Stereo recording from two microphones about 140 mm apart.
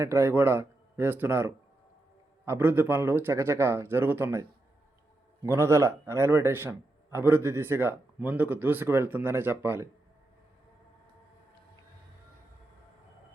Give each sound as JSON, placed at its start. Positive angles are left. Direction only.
{"t": 0.0, "sound": "a man's voice", "side_deg": -20}